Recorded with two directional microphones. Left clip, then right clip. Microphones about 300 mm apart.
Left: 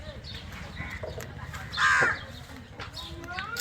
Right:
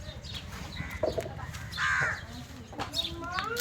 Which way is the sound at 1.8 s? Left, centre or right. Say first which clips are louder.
Left 6 dB; left.